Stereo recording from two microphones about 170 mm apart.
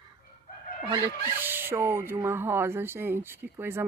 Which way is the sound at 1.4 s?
10° right (ahead or behind).